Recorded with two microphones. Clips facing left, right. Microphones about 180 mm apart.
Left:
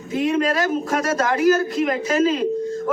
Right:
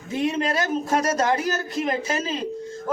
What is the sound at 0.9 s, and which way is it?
Speech, 25° right (ahead or behind).